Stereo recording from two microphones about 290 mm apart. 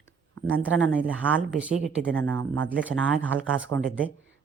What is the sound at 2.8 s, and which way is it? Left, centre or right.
Speech, centre.